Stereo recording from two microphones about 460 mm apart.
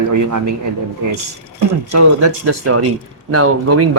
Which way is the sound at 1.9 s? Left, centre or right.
Right.